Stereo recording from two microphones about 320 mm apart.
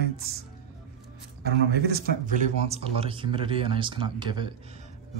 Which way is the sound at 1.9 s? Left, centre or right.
Right.